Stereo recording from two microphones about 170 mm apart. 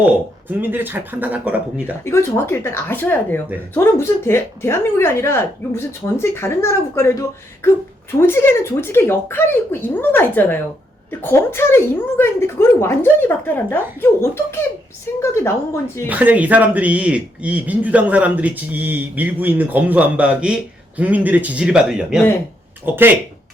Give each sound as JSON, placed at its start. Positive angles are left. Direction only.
{"t": 0.0, "sound": "speech", "side_deg": -10}
{"t": 2.0, "sound": "speech", "side_deg": 15}
{"t": 16.0, "sound": "speech", "side_deg": -10}